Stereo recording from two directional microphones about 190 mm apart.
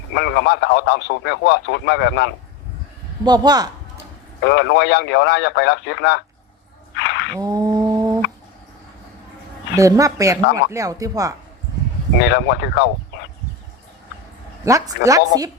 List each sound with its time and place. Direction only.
0.2 s speech: 65° left (ahead or behind)
3.2 s a man's voice: 20° right (ahead or behind)
4.4 s speech: 65° left (ahead or behind)
6.9 s a sound: 65° left (ahead or behind)
7.3 s mantra: 20° right (ahead or behind)
9.7 s speech: 15° right (ahead or behind)
12.2 s speech: 65° left (ahead or behind)
14.6 s speech: 15° right (ahead or behind)